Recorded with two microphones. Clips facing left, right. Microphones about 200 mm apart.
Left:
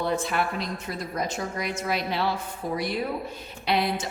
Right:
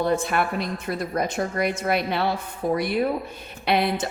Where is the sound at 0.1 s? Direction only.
55° right (ahead or behind).